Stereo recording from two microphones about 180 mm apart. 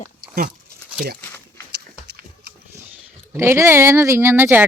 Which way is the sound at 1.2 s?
10° left (ahead or behind).